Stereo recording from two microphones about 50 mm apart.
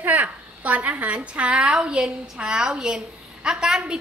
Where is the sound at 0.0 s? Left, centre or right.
Right.